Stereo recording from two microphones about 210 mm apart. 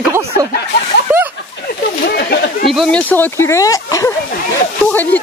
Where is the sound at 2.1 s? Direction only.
50° left (ahead or behind).